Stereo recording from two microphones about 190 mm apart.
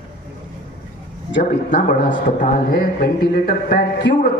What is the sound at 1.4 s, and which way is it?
A man's voice, 40° left (ahead or behind).